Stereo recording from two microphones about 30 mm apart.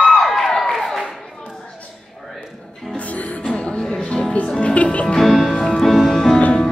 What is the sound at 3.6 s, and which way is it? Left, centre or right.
Music, left.